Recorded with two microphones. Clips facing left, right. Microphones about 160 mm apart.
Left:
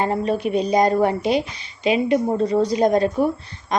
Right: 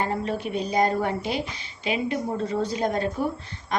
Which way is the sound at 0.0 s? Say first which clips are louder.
Left 6 dB; 20° left (ahead or behind).